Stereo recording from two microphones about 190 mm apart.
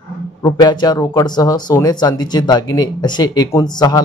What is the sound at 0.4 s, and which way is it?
A man's voice, 20° left (ahead or behind).